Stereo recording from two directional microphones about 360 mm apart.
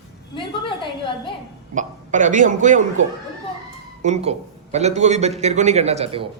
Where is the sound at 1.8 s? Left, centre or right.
Right.